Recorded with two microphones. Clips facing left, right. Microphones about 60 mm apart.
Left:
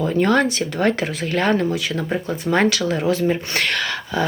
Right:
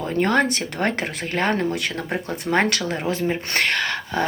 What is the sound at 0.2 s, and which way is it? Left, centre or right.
Speech, right.